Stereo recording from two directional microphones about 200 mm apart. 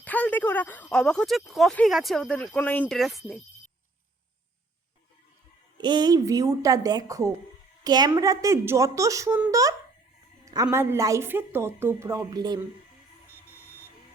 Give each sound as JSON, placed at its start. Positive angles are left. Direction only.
{"t": 0.0, "sound": "speech", "side_deg": 10}
{"t": 5.7, "sound": "a woman's voice", "side_deg": -20}